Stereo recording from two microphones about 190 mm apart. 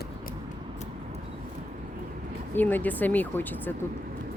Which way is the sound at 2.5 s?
10° left (ahead or behind).